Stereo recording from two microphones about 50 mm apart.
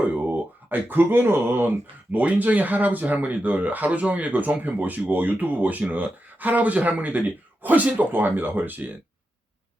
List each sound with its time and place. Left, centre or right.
0.0 s speech: right
2.1 s speech: right